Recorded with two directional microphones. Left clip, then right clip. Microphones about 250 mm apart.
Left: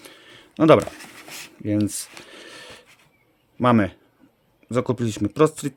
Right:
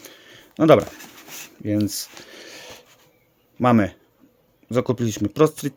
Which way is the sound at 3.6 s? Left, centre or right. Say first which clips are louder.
Even; centre.